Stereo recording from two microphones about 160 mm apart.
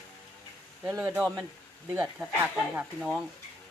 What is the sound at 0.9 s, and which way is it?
Speech, 20° right (ahead or behind).